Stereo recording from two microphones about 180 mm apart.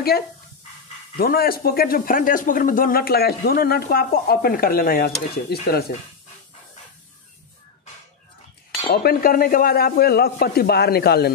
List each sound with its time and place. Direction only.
1.1 s a man's voice: 55° left (ahead or behind)
8.9 s a man's voice: 55° left (ahead or behind)